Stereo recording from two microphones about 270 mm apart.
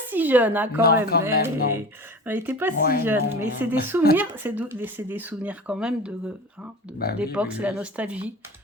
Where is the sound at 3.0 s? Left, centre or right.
Centre.